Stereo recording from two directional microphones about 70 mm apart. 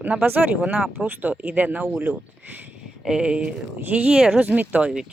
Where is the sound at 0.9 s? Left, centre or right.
Right.